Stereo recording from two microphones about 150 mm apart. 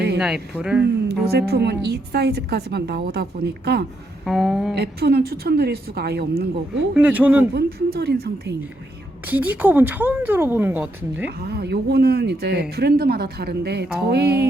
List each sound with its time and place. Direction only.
0.2 s speech: 5° right (ahead or behind)
1.0 s a woman's voice: 90° right
4.3 s a sound: 5° right (ahead or behind)
4.7 s a woman's voice: 90° right
6.9 s speech: 10° right (ahead or behind)
7.5 s a woman's voice: 90° right
9.2 s speech: 10° right (ahead or behind)
11.3 s a woman's voice: 90° right